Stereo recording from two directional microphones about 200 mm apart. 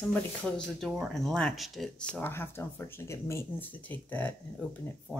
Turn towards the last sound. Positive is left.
turn(degrees=5)  # may be behind; listen again after turning